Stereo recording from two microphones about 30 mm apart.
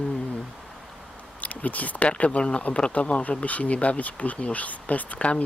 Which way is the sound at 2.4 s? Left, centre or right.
Left.